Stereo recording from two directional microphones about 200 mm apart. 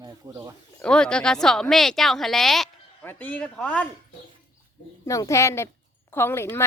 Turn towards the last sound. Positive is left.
turn(degrees=10)  # may be behind; listen again after turning